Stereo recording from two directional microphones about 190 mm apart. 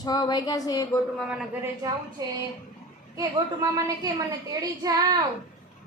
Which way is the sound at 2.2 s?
20° right (ahead or behind).